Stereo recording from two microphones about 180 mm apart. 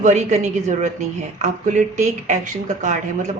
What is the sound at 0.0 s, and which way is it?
Speech, 40° right (ahead or behind).